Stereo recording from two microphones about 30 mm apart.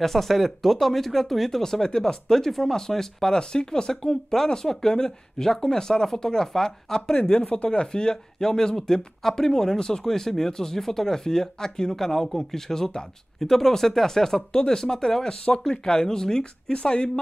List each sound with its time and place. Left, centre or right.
0.0 s speech: centre
1.6 s speech: left
7.2 s speech: left
8.4 s speech: centre
10.0 s speech: centre
14.5 s speech: left
16.7 s speech: left